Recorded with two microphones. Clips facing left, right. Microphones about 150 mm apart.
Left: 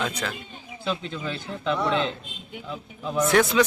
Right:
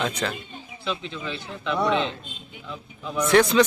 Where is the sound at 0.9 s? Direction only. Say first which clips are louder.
Left 1 dB; 40° left (ahead or behind).